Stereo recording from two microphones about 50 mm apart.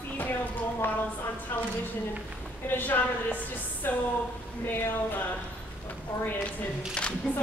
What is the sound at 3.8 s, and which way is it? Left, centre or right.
Speech, left.